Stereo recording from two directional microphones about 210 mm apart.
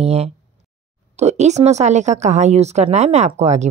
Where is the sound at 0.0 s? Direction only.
30° right (ahead or behind).